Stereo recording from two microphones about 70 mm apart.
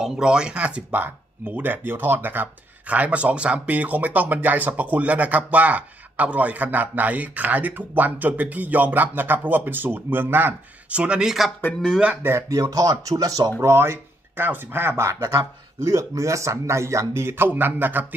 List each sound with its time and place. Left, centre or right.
0.0 s speech: centre
0.9 s speech: right
10.9 s speech: centre
12.2 s speech: right
12.4 s speech: right
13.6 s speech: right